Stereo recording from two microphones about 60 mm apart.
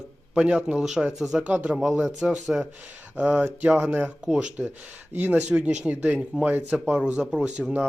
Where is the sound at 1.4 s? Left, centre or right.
Right.